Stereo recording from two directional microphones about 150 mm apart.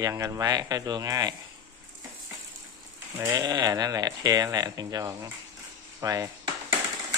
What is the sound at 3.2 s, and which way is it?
Speech, 25° right (ahead or behind).